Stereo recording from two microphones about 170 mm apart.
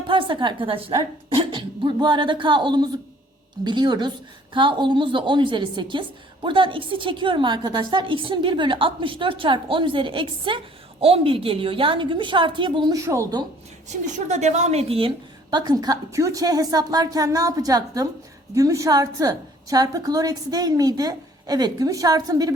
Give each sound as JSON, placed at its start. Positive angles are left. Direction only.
{"t": 0.1, "sound": "a woman's voice", "side_deg": -30}
{"t": 13.9, "sound": "a woman's voice", "side_deg": -45}